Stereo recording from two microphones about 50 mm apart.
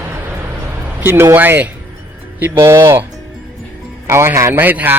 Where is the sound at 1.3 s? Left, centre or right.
Right.